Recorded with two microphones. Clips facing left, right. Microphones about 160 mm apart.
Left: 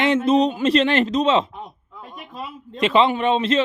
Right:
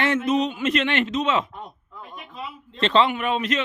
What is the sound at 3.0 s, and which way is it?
Speech, 25° left (ahead or behind).